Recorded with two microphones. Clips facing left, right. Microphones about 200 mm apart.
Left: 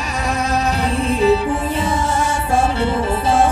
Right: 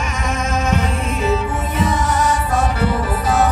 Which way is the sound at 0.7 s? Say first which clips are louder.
Left 2 dB; 35° left (ahead or behind).